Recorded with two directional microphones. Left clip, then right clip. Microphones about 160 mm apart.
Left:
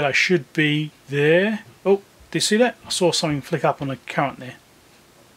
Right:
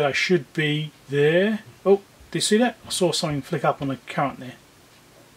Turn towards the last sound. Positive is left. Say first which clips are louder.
# left 2 dB
turn(degrees=20)  # may be behind; listen again after turning